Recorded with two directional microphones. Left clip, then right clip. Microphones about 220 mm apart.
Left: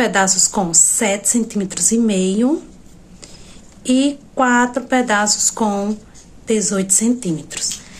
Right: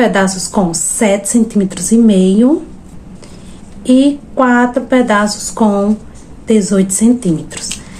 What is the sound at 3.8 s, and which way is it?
Speech, 15° left (ahead or behind).